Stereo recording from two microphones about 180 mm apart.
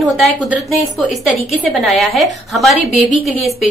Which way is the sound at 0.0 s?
Centre (ahead or behind).